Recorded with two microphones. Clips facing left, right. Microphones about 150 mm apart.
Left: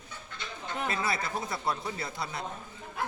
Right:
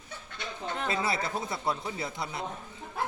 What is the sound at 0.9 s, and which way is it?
Speech, 25° right (ahead or behind).